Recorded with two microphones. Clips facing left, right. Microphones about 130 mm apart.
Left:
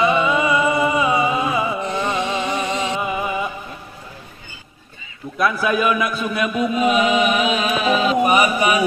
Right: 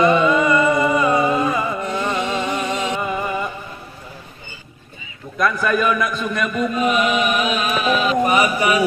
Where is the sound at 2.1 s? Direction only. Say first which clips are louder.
Even; 5° left (ahead or behind).